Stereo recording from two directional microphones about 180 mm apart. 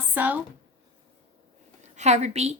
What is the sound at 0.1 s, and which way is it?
Speech, 10° right (ahead or behind).